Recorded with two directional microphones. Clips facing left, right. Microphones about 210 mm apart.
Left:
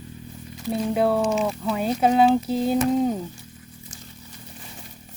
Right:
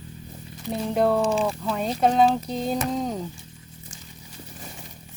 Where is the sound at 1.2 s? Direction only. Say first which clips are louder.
Even; 30° right (ahead or behind).